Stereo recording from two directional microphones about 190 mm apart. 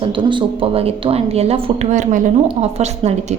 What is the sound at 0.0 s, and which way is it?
A woman's voice, 25° right (ahead or behind).